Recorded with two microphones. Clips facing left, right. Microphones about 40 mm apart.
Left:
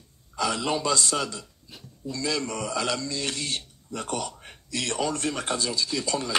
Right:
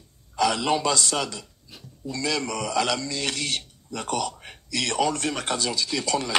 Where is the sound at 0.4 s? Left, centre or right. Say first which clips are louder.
Right 4 dB; right.